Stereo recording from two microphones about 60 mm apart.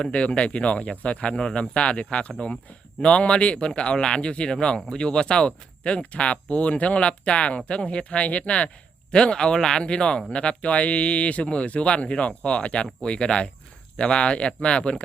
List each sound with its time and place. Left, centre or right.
0.0 s a man's voice: centre